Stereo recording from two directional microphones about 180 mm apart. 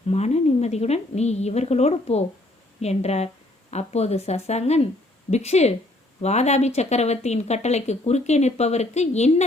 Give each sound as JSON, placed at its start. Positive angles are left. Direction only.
{"t": 0.1, "sound": "a woman's voice", "side_deg": 35}